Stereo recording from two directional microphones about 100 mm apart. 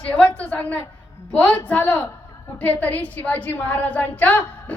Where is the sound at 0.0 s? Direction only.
15° left (ahead or behind).